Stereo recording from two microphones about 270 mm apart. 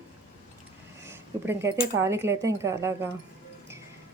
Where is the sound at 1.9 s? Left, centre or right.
Centre.